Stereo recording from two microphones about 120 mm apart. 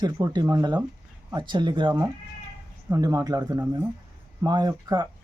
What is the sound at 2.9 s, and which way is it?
Speech, 30° right (ahead or behind).